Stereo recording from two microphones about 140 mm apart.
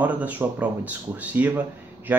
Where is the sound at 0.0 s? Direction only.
10° right (ahead or behind).